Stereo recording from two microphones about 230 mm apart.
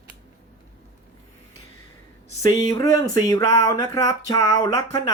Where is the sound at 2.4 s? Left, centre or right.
Centre.